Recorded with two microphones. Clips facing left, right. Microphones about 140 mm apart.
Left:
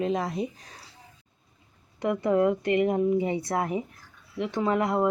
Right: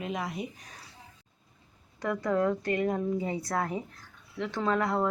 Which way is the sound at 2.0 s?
20° left (ahead or behind).